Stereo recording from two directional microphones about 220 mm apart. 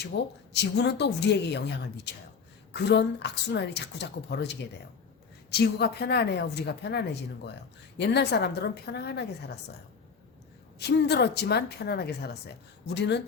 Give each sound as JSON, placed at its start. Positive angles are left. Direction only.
{"t": 0.1, "sound": "speech", "side_deg": 50}
{"t": 10.8, "sound": "speech", "side_deg": 50}